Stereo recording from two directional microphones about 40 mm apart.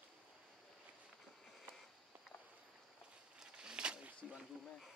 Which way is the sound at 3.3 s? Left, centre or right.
Centre.